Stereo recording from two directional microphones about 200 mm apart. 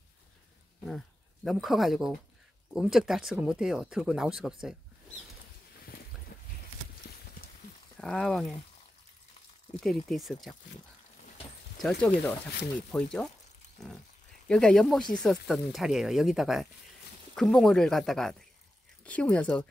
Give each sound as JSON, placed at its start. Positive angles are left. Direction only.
{"t": 0.8, "sound": "speech", "side_deg": 0}
{"t": 6.3, "sound": "a sound", "side_deg": 50}
{"t": 8.0, "sound": "speech", "side_deg": 0}
{"t": 9.8, "sound": "speech", "side_deg": 0}
{"t": 11.8, "sound": "speech", "side_deg": 5}
{"t": 13.8, "sound": "pig", "side_deg": 0}
{"t": 14.5, "sound": "speech", "side_deg": 5}